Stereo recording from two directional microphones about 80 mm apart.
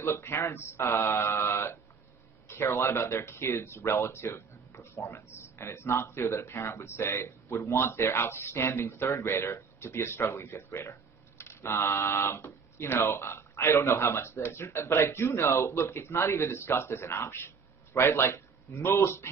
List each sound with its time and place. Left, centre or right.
0.0 s a man's voice: left